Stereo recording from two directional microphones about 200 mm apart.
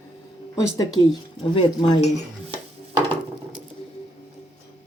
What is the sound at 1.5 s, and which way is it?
Speech, 25° left (ahead or behind).